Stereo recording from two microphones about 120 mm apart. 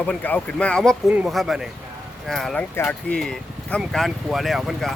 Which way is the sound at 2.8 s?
20° left (ahead or behind).